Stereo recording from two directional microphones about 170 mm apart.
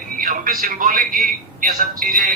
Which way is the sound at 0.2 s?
55° right (ahead or behind).